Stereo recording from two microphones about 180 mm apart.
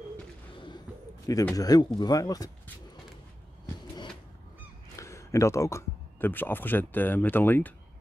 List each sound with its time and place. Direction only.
0.9 s bird: 5° right (ahead or behind)
1.5 s speech: 20° left (ahead or behind)
4.9 s speech: 15° left (ahead or behind)